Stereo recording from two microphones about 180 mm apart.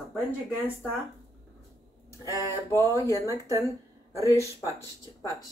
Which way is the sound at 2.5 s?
15° left (ahead or behind).